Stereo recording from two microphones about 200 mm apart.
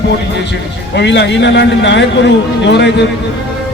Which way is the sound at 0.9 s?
60° left (ahead or behind).